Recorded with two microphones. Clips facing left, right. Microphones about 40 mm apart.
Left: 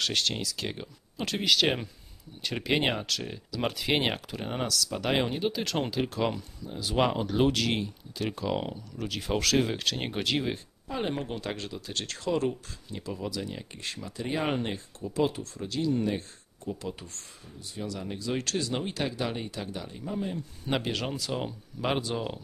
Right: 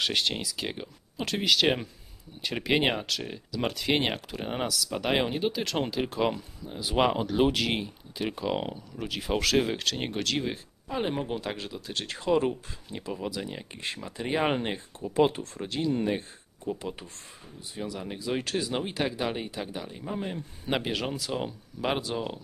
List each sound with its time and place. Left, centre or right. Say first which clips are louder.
0.0 s speech: right 1 dB; centre
10.1 s speech: left 2 dB; centre
10.9 s speech: right 2 dB; centre
12.1 s speech: right 3 dB; centre
20.2 s speech: left 2 dB; right
20.6 s speech: right 1 dB; centre